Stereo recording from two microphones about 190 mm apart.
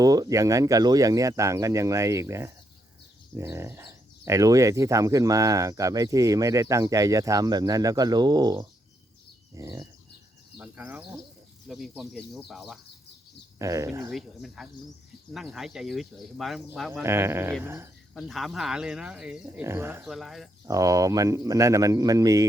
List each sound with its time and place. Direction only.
0.0 s speech: 20° right (ahead or behind); by 12.8 s centre (ahead or behind)
13.6 s speech: 15° right (ahead or behind)
14.1 s speech: centre (ahead or behind)
16.9 s speech: 10° right (ahead or behind)
18.1 s speech: centre (ahead or behind)
20.7 s speech: 15° right (ahead or behind)